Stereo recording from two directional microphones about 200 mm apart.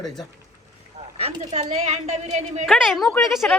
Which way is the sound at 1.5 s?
35° right (ahead or behind).